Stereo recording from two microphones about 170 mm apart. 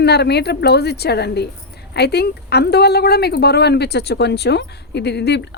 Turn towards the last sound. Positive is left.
turn(degrees=80)